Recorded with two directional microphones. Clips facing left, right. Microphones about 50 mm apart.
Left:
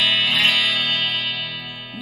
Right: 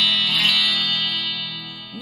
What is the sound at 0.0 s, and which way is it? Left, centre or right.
Music, left.